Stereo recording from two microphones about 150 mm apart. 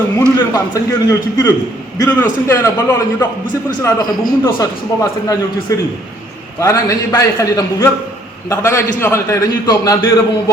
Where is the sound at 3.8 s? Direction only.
25° left (ahead or behind).